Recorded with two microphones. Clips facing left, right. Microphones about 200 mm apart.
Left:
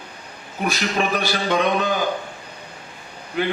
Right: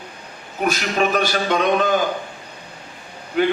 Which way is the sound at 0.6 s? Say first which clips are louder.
Right 2 dB; 45° right (ahead or behind).